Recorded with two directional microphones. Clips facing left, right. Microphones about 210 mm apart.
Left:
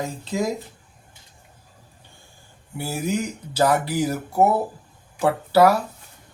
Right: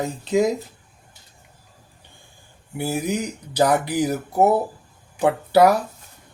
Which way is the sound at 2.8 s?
15° right (ahead or behind).